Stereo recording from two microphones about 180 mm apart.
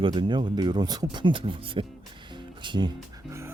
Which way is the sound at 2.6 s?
25° right (ahead or behind).